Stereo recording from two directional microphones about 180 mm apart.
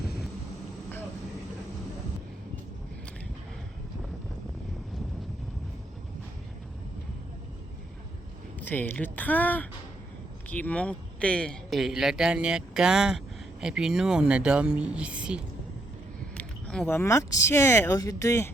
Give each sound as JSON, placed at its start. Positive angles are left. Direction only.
{"t": 8.5, "sound": "a man's voice", "side_deg": 10}
{"t": 16.4, "sound": "speech", "side_deg": 5}